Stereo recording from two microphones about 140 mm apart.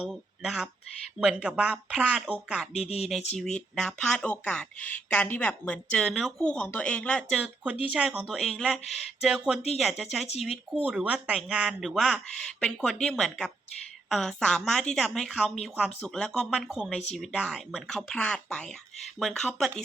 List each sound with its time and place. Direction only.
0.0 s speech: centre (ahead or behind)
2.7 s speech: 50° left (ahead or behind)
3.3 s speech: 5° left (ahead or behind)
7.6 s speech: 10° right (ahead or behind)